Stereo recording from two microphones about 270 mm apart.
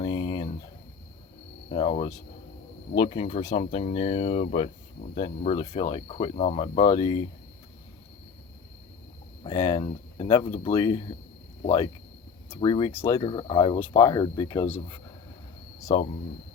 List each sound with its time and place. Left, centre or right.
0.0 s a sound: centre
1.7 s speech: left
9.4 s speech: centre
12.5 s speech: centre
15.9 s speech: centre